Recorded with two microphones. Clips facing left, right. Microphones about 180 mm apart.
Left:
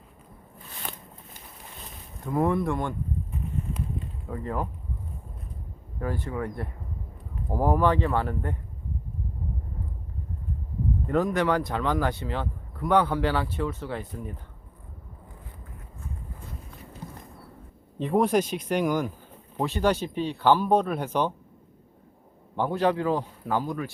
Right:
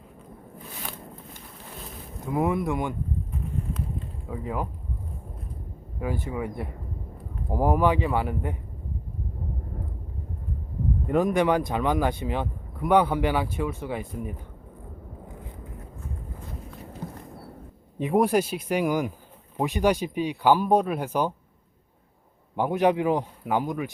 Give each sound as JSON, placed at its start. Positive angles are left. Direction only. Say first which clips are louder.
{"t": 2.2, "sound": "speech", "louder": "even", "side_deg": -5}
{"t": 4.3, "sound": "speech", "louder": "even", "side_deg": -5}
{"t": 6.0, "sound": "speech", "louder": "right 1 dB", "side_deg": -10}
{"t": 11.0, "sound": "speech", "louder": "right 2 dB", "side_deg": -15}
{"t": 18.0, "sound": "speech", "louder": "right 1 dB", "side_deg": -10}
{"t": 22.5, "sound": "speech", "louder": "right 2 dB", "side_deg": -15}